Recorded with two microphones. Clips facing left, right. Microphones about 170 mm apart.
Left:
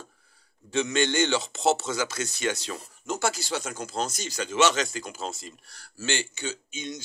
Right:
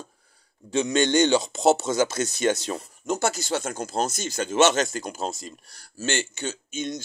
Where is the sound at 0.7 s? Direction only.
40° right (ahead or behind).